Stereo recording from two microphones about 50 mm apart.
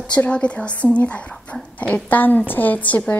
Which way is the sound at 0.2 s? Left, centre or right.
Left.